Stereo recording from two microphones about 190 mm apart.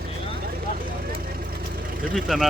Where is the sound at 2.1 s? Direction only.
Centre (ahead or behind).